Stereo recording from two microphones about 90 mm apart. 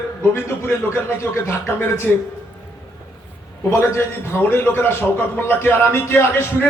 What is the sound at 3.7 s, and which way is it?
A man's voice, 30° left (ahead or behind).